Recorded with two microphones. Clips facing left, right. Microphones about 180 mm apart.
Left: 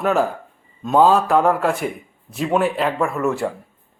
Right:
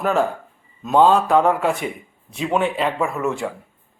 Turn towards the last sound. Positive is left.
turn(degrees=0)  # may be behind; listen again after turning